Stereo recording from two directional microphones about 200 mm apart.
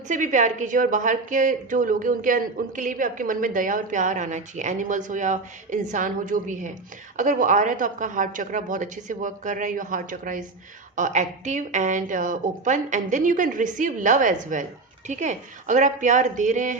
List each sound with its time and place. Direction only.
0.1 s a woman's voice: 40° right (ahead or behind)